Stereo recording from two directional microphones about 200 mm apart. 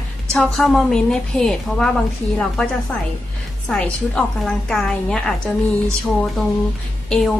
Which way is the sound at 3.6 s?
5° left (ahead or behind).